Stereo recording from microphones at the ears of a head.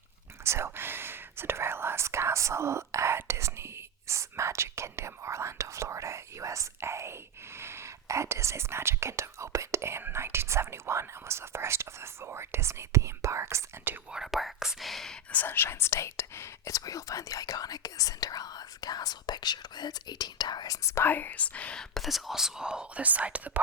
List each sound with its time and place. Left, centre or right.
0.4 s whispering: right
1.4 s speech: right
14.2 s speech: centre
15.1 s speech: left
22.0 s speech: centre